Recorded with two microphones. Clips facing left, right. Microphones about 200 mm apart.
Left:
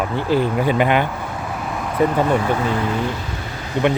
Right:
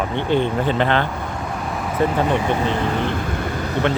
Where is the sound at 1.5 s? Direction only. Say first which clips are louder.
Even; centre (ahead or behind).